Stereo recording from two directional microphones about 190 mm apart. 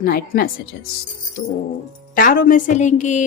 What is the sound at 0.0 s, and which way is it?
Speech, 50° left (ahead or behind).